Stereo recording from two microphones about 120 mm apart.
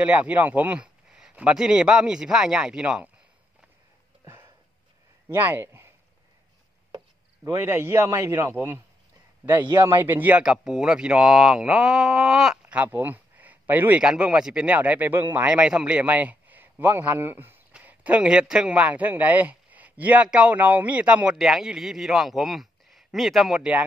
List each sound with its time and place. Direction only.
0.0 s speech: 10° right (ahead or behind)
5.3 s a man's voice: 20° right (ahead or behind)
7.4 s a man's voice: 20° right (ahead or behind)
10.0 s speech: 15° right (ahead or behind)